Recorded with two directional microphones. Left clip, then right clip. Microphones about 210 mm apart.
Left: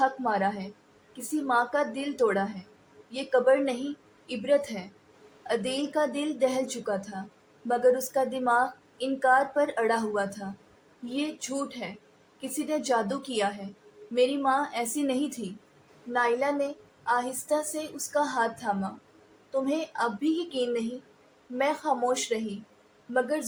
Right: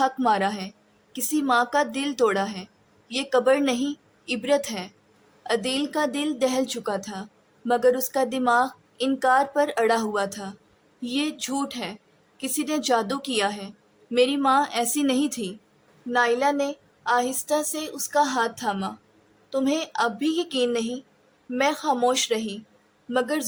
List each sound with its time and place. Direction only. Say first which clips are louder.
0.0 s a woman's voice: right 4 dB; 30° right (ahead or behind)